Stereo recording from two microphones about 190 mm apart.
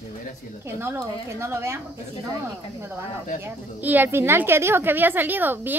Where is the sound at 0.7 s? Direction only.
10° right (ahead or behind).